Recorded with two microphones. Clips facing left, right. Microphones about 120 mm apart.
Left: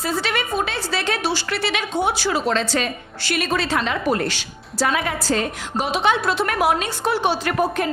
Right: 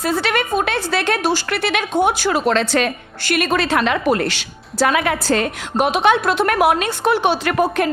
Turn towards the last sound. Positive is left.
turn(degrees=-80)